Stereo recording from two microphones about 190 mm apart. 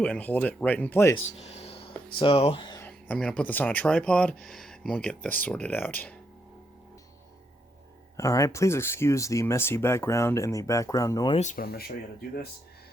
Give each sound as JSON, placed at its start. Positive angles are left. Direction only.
{"t": 0.0, "sound": "speech", "side_deg": 5}
{"t": 1.4, "sound": "a sound", "side_deg": 35}
{"t": 2.1, "sound": "speech", "side_deg": 30}
{"t": 2.8, "sound": "speech", "side_deg": 5}
{"t": 8.1, "sound": "speech", "side_deg": 15}
{"t": 11.3, "sound": "speech", "side_deg": 45}